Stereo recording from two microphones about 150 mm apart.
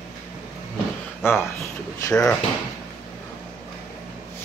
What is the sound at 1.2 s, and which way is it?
Speech, 15° left (ahead or behind).